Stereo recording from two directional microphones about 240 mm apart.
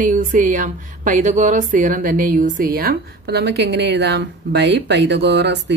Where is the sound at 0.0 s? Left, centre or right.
Right.